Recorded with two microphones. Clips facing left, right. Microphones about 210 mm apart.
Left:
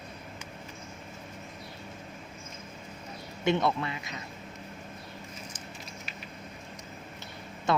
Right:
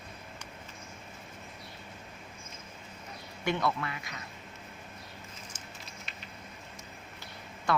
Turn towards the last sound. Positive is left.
turn(degrees=25)  # may be behind; listen again after turning